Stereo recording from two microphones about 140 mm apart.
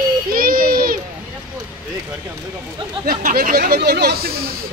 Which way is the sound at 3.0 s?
80° right.